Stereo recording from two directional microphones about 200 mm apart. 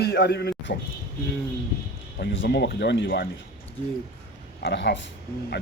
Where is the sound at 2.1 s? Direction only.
60° left (ahead or behind).